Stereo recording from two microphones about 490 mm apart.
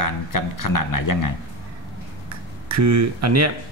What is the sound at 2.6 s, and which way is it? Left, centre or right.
Speech, right.